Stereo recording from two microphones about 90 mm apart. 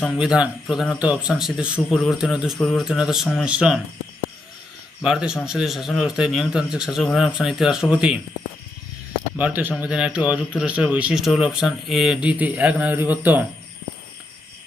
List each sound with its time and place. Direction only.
0.2 s a man's voice: 5° right (ahead or behind)
5.0 s a man's voice: 10° right (ahead or behind)
9.4 s a man's voice: 20° right (ahead or behind)
11.2 s speech: 5° right (ahead or behind)
12.2 s a man's voice: 15° right (ahead or behind)